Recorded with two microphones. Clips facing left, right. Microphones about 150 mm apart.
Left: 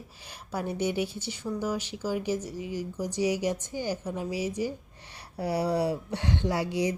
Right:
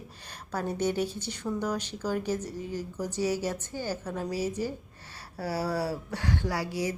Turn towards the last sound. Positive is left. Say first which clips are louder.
# left 3 dB
turn(degrees=20)  # may be behind; listen again after turning